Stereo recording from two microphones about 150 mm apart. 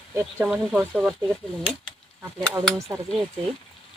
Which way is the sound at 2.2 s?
15° right (ahead or behind).